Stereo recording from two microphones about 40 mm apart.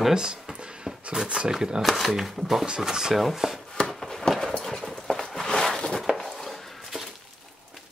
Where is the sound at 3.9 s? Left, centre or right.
Centre.